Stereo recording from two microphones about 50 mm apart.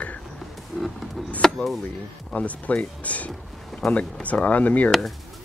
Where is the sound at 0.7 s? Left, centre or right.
Centre.